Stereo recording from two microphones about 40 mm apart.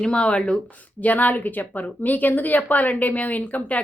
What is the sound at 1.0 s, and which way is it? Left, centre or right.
A woman's voice, left.